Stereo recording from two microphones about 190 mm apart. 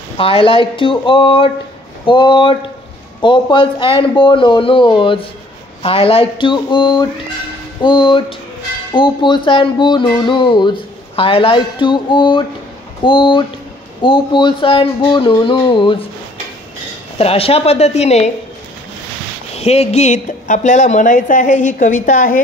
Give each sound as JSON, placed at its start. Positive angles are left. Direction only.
{"t": 0.2, "sound": "a sound", "side_deg": 30}
{"t": 17.2, "sound": "speech", "side_deg": 30}
{"t": 19.5, "sound": "speech", "side_deg": 35}